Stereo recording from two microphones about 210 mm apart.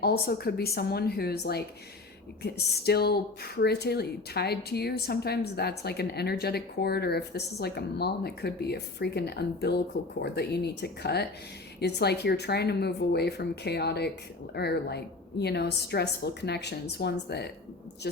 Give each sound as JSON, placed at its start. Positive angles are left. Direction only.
{"t": 0.0, "sound": "speech", "side_deg": 50}